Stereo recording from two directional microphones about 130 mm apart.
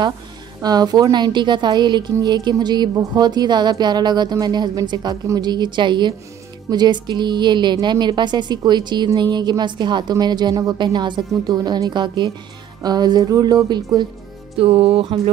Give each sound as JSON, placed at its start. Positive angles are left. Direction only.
{"t": 0.6, "sound": "a woman's voice", "side_deg": -30}
{"t": 14.6, "sound": "music", "side_deg": -45}